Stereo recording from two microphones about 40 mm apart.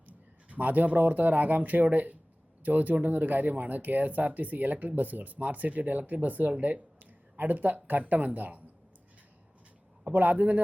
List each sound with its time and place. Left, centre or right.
0.4 s speech: right
10.1 s a man's voice: right